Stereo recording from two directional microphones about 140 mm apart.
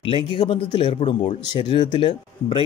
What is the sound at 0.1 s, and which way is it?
Speech, 40° left (ahead or behind).